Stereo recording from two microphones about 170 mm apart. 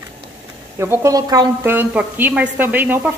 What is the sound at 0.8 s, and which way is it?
A woman's voice, 15° right (ahead or behind).